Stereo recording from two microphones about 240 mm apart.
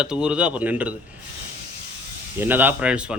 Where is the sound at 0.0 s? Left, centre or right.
Centre.